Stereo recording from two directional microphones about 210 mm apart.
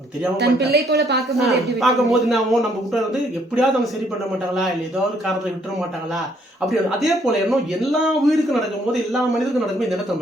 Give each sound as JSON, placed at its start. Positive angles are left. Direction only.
{"t": 0.3, "sound": "speech", "side_deg": -55}
{"t": 1.3, "sound": "speech", "side_deg": 0}
{"t": 6.7, "sound": "speech", "side_deg": 0}